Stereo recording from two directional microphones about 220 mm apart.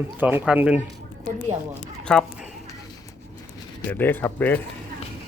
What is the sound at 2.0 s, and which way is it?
Speech, 5° left (ahead or behind).